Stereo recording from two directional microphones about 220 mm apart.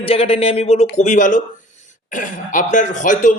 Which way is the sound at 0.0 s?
25° left (ahead or behind).